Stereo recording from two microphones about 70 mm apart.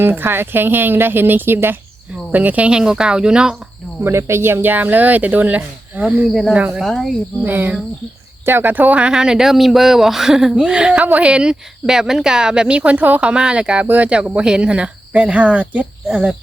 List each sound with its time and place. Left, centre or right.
0.0 s speech: right; by 3.6 s centre
4.0 s speech: right; by 6.8 s centre
6.8 s speech: centre
7.4 s speech: right